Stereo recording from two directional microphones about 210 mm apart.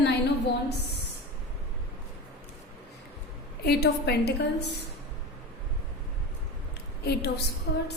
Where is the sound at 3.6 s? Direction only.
50° left (ahead or behind).